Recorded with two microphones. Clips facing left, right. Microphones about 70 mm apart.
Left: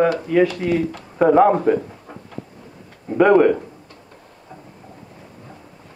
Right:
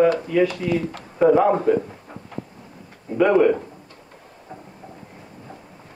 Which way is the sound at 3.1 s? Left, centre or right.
Left.